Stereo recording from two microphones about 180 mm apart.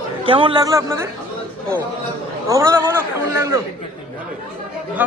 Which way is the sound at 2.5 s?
15° right (ahead or behind).